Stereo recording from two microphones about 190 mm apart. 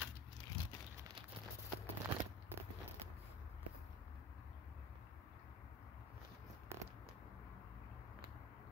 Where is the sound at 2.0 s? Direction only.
10° right (ahead or behind).